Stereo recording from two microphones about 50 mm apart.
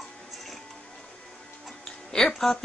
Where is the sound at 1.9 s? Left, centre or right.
Centre.